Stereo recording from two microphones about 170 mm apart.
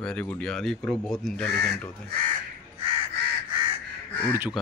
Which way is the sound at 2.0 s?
60° right (ahead or behind).